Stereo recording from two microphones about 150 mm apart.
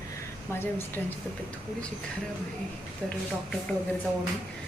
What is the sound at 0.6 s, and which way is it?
Speech, 15° left (ahead or behind).